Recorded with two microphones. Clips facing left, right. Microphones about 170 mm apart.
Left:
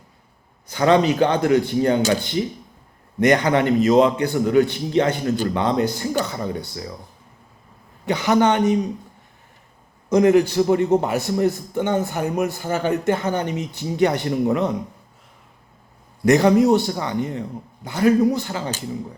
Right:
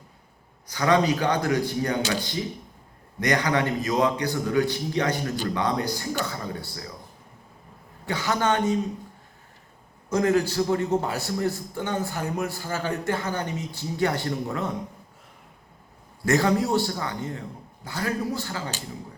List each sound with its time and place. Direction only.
0.7 s a man's voice: 25° left (ahead or behind)
3.2 s a man's voice: 25° left (ahead or behind)
8.0 s a man's voice: 20° left (ahead or behind)
10.1 s a man's voice: 20° left (ahead or behind)
16.2 s a man's voice: 20° left (ahead or behind)